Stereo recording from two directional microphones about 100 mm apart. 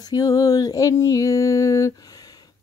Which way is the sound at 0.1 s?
35° left (ahead or behind).